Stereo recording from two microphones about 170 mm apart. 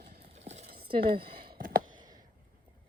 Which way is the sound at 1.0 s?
65° right (ahead or behind).